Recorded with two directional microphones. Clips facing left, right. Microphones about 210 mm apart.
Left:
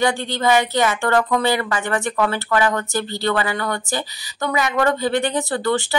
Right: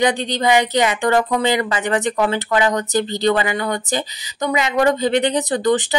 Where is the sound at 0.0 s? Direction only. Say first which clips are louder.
Right 2 dB; 20° right (ahead or behind).